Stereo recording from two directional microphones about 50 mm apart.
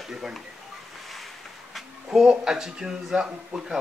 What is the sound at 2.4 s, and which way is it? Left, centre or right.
Speech, centre.